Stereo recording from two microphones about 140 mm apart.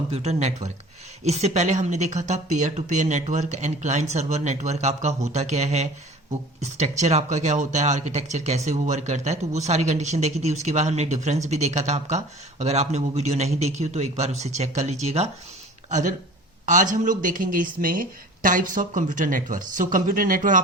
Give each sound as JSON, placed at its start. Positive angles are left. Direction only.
{"t": 0.1, "sound": "speech", "side_deg": -50}
{"t": 15.9, "sound": "speech", "side_deg": -60}